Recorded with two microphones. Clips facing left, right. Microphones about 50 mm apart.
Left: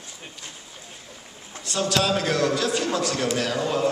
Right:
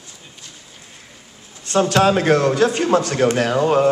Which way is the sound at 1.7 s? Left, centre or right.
Right.